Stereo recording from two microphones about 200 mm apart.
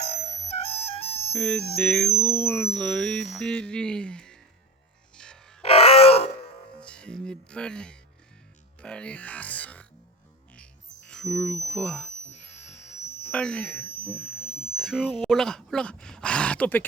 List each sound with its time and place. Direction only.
0.2 s music: 30° left (ahead or behind)
1.3 s speech: 5° left (ahead or behind)
5.1 s music: 5° left (ahead or behind)
5.6 s grunt: 30° left (ahead or behind)
6.8 s music: 5° left (ahead or behind)
8.8 s speech: 5° left (ahead or behind)
11.1 s speech: centre (ahead or behind)
12.1 s a sound: 35° left (ahead or behind)
13.2 s speech: 5° left (ahead or behind)
14.4 s a sound: 30° left (ahead or behind)
14.8 s speech: centre (ahead or behind)